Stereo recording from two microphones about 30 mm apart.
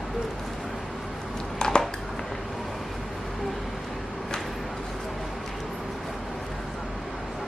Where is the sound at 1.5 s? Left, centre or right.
Left.